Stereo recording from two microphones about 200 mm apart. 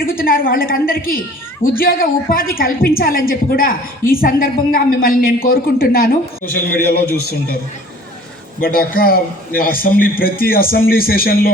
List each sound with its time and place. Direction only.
0.0 s a woman's voice: 45° left (ahead or behind)
8.6 s a woman's voice: 45° left (ahead or behind)